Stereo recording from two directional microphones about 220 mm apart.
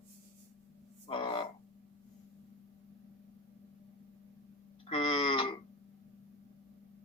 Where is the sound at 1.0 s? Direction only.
25° left (ahead or behind).